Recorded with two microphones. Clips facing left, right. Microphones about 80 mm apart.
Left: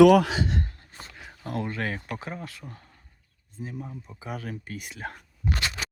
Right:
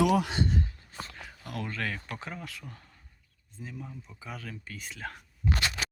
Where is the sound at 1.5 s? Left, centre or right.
Left.